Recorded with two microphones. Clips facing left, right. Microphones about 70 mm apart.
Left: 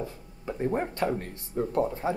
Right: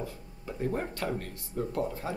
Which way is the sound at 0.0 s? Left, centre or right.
Left.